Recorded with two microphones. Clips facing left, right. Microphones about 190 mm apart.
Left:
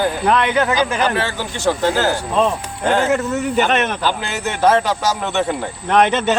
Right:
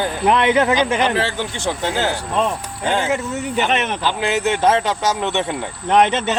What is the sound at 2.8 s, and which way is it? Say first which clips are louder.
Speech: left 3 dB; 45° left (ahead or behind).